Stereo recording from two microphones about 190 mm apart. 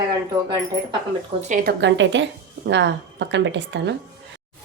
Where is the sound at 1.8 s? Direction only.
70° right (ahead or behind).